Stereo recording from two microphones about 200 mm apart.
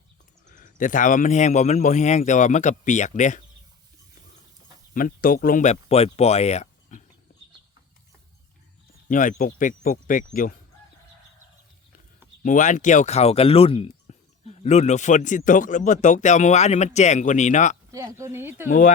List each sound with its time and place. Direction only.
0.4 s speech: 40° left (ahead or behind)
4.9 s speech: 45° left (ahead or behind)
9.0 s speech: 40° left (ahead or behind)
12.4 s speech: 40° left (ahead or behind)
17.9 s speech: 15° right (ahead or behind)
18.7 s speech: 40° left (ahead or behind)